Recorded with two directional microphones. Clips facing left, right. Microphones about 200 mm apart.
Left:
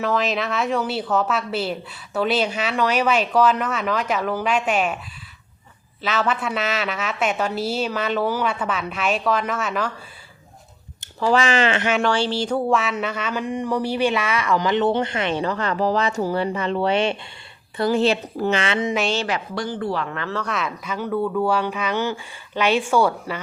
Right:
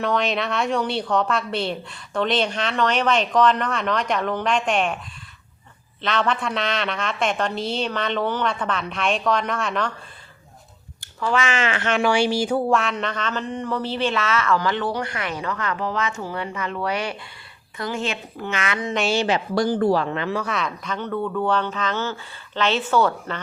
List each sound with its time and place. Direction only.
0.0 s a woman's voice: centre (ahead or behind)
6.0 s a woman's voice: 5° left (ahead or behind)
11.3 s a woman's voice: 35° left (ahead or behind)
12.0 s a sound: 10° right (ahead or behind); by 17.2 s 25° left (ahead or behind)
17.7 s a woman's voice: 35° left (ahead or behind)
19.1 s speech: 20° right (ahead or behind)
19.5 s speech: 40° right (ahead or behind)
20.1 s speech: 20° right (ahead or behind)
20.4 s a sound: centre (ahead or behind)